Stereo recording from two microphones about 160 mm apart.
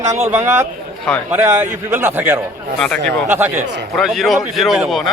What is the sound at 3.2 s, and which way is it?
Speech, 10° right (ahead or behind).